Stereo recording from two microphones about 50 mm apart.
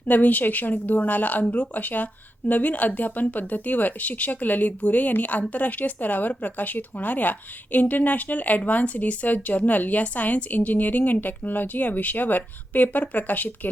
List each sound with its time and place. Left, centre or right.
0.1 s speech: left